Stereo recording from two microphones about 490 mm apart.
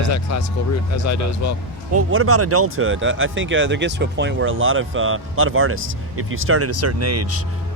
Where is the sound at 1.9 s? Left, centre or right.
Right.